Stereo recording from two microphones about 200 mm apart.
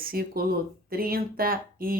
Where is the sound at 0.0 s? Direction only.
45° right (ahead or behind).